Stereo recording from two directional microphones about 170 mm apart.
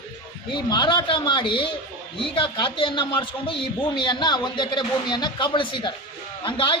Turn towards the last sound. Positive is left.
turn(degrees=30)  # may be behind; listen again after turning